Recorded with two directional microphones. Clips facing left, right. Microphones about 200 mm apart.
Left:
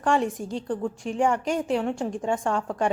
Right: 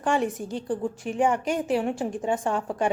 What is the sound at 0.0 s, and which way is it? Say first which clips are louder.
A woman's voice: left 1 dB; centre (ahead or behind).